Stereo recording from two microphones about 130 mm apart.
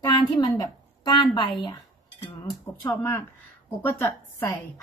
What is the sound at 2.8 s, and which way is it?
Speech, 20° left (ahead or behind).